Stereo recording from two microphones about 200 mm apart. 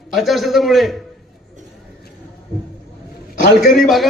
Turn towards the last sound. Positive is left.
turn(degrees=0)  # may be behind; listen again after turning